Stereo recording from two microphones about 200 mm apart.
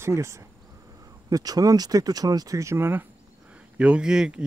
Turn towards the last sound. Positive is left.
turn(degrees=-5)  # may be behind; listen again after turning